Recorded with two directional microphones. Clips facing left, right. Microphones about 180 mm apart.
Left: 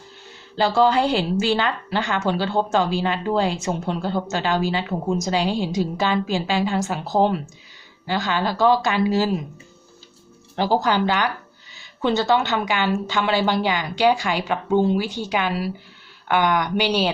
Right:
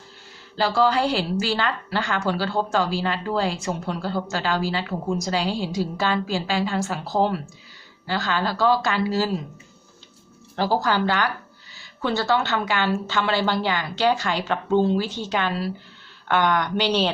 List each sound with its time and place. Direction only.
0.5 s a woman's voice: 20° left (ahead or behind)
10.5 s a woman's voice: 20° left (ahead or behind)